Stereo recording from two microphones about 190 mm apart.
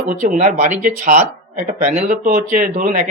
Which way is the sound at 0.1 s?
40° right (ahead or behind).